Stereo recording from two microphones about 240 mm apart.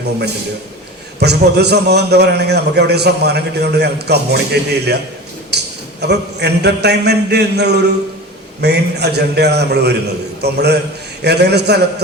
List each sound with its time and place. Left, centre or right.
1.2 s a man's voice: right